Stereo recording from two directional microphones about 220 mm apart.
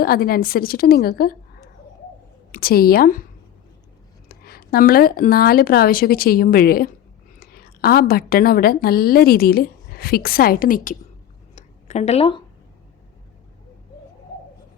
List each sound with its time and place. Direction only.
0.0 s a woman's voice: 40° left (ahead or behind)
2.5 s speech: 40° left (ahead or behind)
4.3 s a woman's voice: 45° left (ahead or behind)
11.5 s a sound: 30° left (ahead or behind)